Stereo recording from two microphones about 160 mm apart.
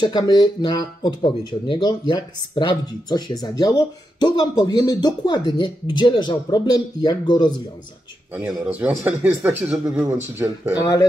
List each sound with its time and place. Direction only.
0.0 s speech: 25° left (ahead or behind)
8.4 s speech: 10° right (ahead or behind)
10.7 s speech: 20° left (ahead or behind)